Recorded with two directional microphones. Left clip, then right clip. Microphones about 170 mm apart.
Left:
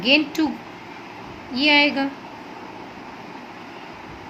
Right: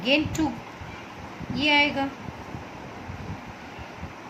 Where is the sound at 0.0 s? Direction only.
20° left (ahead or behind).